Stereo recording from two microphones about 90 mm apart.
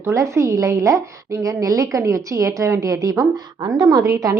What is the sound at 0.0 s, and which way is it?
A woman's voice, 35° right (ahead or behind).